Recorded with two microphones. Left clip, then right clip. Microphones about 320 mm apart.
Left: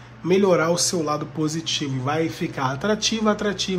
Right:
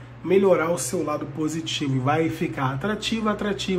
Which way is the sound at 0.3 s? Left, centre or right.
Centre.